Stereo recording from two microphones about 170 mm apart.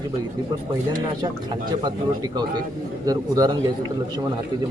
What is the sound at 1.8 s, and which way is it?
Speech, 25° right (ahead or behind).